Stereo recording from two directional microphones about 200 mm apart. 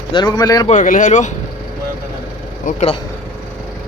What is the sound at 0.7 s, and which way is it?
Speech, 40° left (ahead or behind).